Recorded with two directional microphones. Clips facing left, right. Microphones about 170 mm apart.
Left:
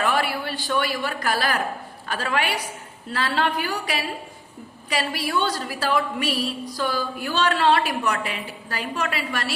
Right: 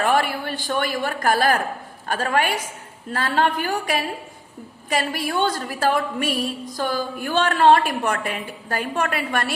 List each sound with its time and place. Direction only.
0.0 s a woman's voice: 50° right (ahead or behind)